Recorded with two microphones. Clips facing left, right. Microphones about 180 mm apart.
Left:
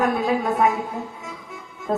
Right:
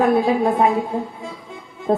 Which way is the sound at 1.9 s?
30° right (ahead or behind).